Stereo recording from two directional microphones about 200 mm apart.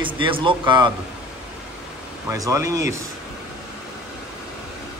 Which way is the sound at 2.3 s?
15° right (ahead or behind).